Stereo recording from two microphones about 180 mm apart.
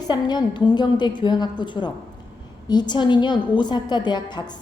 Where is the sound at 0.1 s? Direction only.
25° left (ahead or behind).